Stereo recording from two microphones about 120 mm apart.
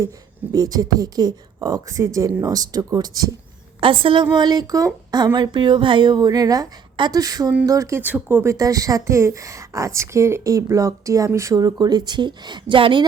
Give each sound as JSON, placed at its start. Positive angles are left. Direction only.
{"t": 0.5, "sound": "speech", "side_deg": -30}
{"t": 3.8, "sound": "speech", "side_deg": -45}
{"t": 8.0, "sound": "speech", "side_deg": -15}
{"t": 8.5, "sound": "speech", "side_deg": -30}